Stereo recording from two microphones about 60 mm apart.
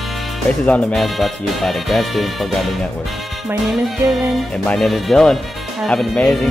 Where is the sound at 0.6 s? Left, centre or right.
Centre.